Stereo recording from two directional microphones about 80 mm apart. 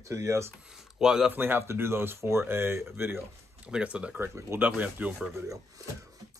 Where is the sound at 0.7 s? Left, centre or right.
Centre.